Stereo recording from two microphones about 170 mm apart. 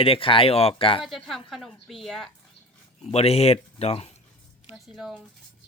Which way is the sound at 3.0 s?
35° left (ahead or behind).